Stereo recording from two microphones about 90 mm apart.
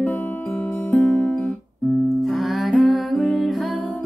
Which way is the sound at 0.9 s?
15° left (ahead or behind).